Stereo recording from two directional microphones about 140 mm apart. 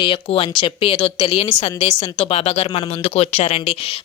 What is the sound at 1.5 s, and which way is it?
Speech, 50° left (ahead or behind).